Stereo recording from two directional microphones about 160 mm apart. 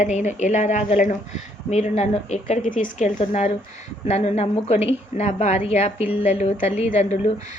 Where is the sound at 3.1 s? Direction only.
45° left (ahead or behind).